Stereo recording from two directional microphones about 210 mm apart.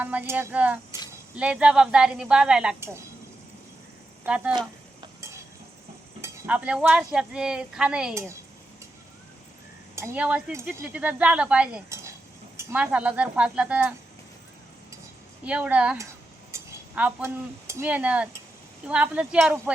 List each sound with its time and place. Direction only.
0.0 s speech: 10° right (ahead or behind)
4.3 s speech: 5° right (ahead or behind)
4.5 s stir: 15° right (ahead or behind)
6.2 s speech: 10° right (ahead or behind)
9.9 s speech: 10° right (ahead or behind)
15.4 s speech: 5° right (ahead or behind)